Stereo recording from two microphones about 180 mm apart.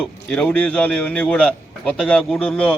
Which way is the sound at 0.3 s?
5° left (ahead or behind).